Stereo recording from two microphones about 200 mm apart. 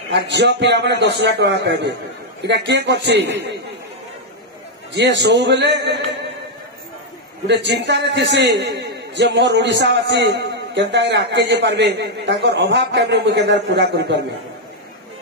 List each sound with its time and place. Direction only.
0.1 s a man's voice: 60° right (ahead or behind)
4.9 s a man's voice: 55° right (ahead or behind)
7.4 s a man's voice: 60° right (ahead or behind)